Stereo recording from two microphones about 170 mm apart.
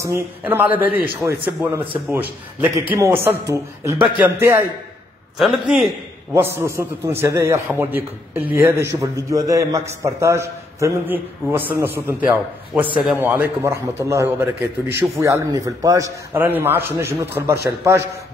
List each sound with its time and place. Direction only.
0.0 s a man's voice: 15° right (ahead or behind)
5.4 s a man's voice: centre (ahead or behind)
6.3 s a man's voice: 15° right (ahead or behind)